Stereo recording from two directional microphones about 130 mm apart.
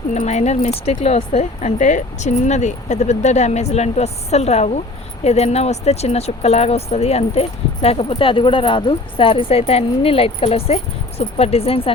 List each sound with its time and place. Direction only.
0.1 s speech: 60° left (ahead or behind)